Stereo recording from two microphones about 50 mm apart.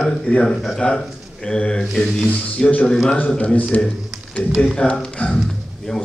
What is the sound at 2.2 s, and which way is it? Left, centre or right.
A man's voice, left.